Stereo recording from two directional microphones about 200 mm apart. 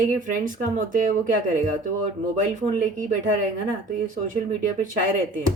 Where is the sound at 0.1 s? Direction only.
40° right (ahead or behind).